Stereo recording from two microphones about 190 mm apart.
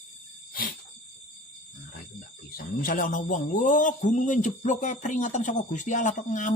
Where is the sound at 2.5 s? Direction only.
45° left (ahead or behind).